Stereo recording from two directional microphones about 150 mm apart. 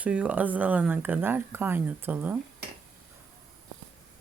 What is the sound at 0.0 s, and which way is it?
Speech, 10° right (ahead or behind).